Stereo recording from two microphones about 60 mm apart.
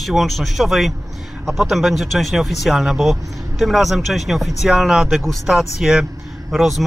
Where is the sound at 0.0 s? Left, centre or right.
Centre.